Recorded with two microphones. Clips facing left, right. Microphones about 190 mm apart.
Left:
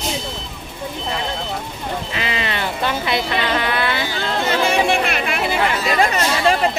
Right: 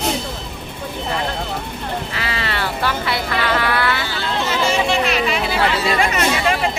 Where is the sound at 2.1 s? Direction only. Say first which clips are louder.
Left 1 dB; 20° left (ahead or behind).